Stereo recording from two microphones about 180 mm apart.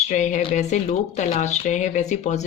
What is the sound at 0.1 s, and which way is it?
Speech, 40° left (ahead or behind).